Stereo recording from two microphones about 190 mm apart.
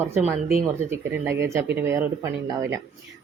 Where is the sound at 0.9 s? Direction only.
10° right (ahead or behind).